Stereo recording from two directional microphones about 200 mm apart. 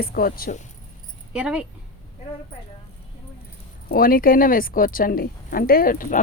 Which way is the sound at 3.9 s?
45° left (ahead or behind).